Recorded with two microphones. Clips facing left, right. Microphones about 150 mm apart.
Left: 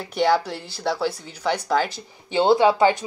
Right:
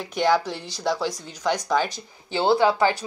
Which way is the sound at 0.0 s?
10° left (ahead or behind).